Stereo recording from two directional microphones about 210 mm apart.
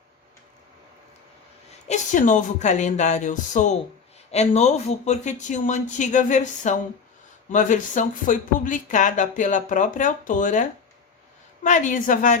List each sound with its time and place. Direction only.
1.9 s speech: 35° left (ahead or behind)